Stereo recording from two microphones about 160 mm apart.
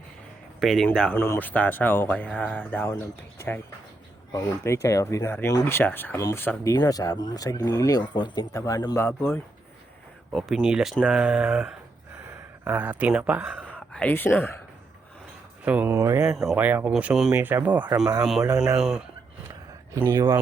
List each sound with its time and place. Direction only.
0.6 s speech: centre (ahead or behind)
4.3 s speech: 15° left (ahead or behind)
10.3 s speech: centre (ahead or behind)
13.7 s speech: 5° left (ahead or behind)
15.6 s speech: 10° right (ahead or behind)
16.3 s speech: centre (ahead or behind)
19.9 s speech: 20° right (ahead or behind)